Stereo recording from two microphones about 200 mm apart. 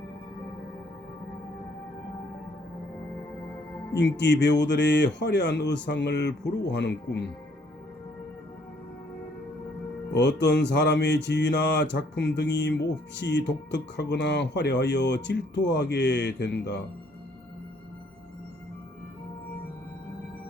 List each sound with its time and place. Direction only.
3.9 s speech: 60° left (ahead or behind)
10.1 s speech: 60° left (ahead or behind)